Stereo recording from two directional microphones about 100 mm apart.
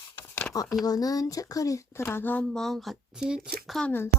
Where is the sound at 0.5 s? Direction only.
35° left (ahead or behind); by 3.8 s 5° right (ahead or behind).